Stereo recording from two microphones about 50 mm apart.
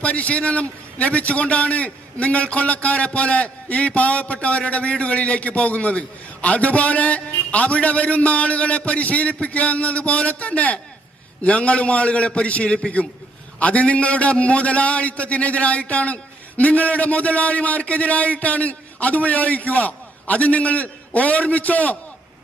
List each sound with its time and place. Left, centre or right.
0.0 s a man's voice: left